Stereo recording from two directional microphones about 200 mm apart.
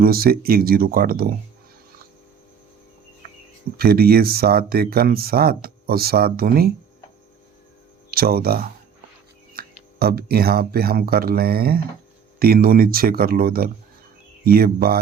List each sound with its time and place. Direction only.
0.0 s speech: 50° right (ahead or behind)
3.2 s cricket: 45° right (ahead or behind)
3.8 s speech: 50° right (ahead or behind)
8.1 s speech: 50° right (ahead or behind)